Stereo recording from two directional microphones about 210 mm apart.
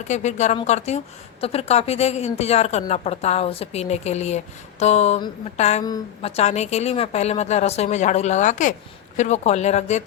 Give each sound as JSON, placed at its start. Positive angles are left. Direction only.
{"t": 0.1, "sound": "a woman's voice", "side_deg": 35}